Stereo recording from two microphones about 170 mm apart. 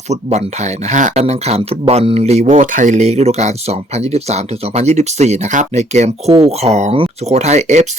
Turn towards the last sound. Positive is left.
turn(degrees=-40)  # may be behind; listen again after turning